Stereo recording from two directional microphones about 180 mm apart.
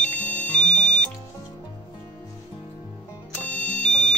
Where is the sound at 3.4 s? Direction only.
5° left (ahead or behind).